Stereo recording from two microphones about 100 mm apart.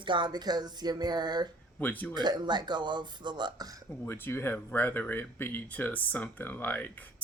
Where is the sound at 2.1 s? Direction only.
45° right (ahead or behind).